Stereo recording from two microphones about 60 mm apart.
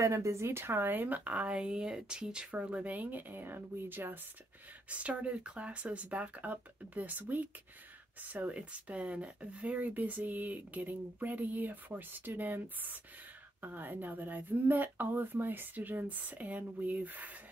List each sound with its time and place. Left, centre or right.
0.0 s speech: right
4.8 s speech: right